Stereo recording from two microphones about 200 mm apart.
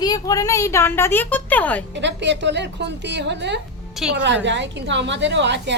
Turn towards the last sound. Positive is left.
turn(degrees=-60)  # may be behind; listen again after turning